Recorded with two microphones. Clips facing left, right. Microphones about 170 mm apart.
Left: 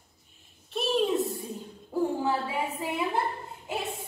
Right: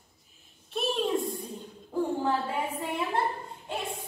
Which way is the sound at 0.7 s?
Centre (ahead or behind).